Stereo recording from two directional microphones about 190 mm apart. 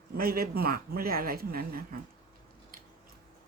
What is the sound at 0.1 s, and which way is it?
Speech, 50° right (ahead or behind).